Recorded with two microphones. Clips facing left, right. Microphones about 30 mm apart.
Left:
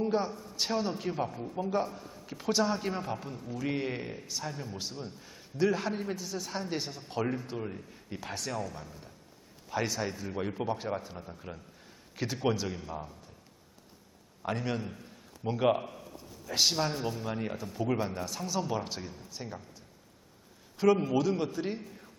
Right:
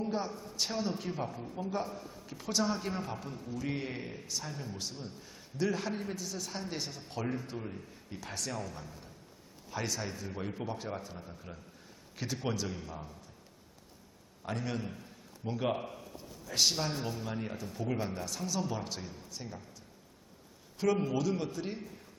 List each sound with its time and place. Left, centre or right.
0.0 s a man's voice: centre
14.4 s a man's voice: centre
14.8 s a man's voice: centre
15.4 s a man's voice: left
15.8 s a sound: centre
16.5 s a man's voice: centre
20.7 s a man's voice: centre